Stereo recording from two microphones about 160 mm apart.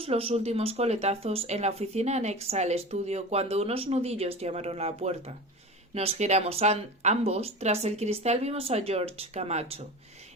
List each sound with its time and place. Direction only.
0.0 s speech: 35° right (ahead or behind)